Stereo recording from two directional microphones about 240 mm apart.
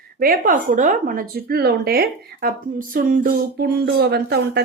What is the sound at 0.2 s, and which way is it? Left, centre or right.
A woman's voice, right.